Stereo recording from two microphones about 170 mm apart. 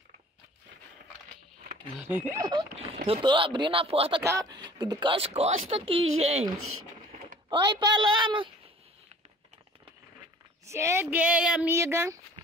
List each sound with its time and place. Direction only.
2.0 s speech: 10° right (ahead or behind)
3.1 s speech: 30° right (ahead or behind)
4.2 s speech: 20° right (ahead or behind); by 6.5 s 35° right (ahead or behind)
7.4 s speech: 25° right (ahead or behind)
10.6 s speech: 15° right (ahead or behind)
11.7 s speech: 15° right (ahead or behind)